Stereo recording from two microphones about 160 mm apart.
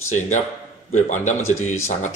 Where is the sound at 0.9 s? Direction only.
50° left (ahead or behind).